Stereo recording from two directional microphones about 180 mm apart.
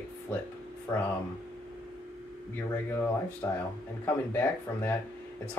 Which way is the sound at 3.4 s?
15° left (ahead or behind).